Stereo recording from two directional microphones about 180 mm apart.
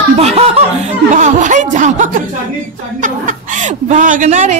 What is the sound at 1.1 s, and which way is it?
Speech, 45° right (ahead or behind).